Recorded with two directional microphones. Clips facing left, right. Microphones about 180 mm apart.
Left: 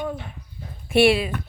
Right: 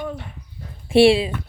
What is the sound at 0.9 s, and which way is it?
Speech, 30° right (ahead or behind).